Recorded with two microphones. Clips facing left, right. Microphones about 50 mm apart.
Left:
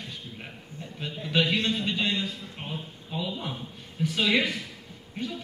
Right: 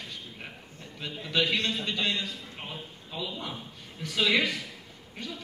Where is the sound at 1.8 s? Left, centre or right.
Centre.